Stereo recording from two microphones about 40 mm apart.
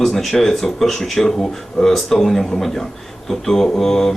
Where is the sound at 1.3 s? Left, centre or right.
Left.